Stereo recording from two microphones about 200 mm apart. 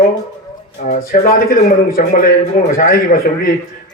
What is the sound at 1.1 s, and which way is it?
A man's voice, 45° left (ahead or behind).